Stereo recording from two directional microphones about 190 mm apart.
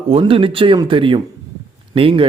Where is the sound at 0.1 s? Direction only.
30° right (ahead or behind).